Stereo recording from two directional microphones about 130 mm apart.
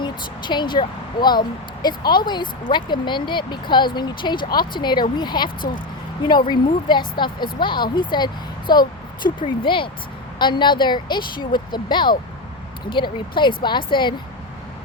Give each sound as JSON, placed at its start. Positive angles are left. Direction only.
{"t": 0.0, "sound": "speech", "side_deg": 35}